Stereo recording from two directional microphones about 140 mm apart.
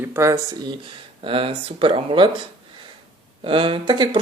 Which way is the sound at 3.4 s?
40° right (ahead or behind).